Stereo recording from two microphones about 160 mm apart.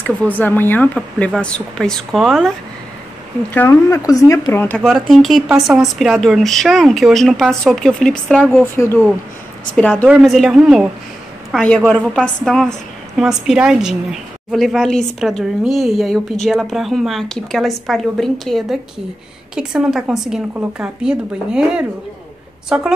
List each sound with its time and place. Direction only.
0.0 s a woman's voice: 10° left (ahead or behind)
3.5 s speech: 20° left (ahead or behind)
4.8 s a woman's voice: centre (ahead or behind)
10.0 s a woman's voice: 5° right (ahead or behind)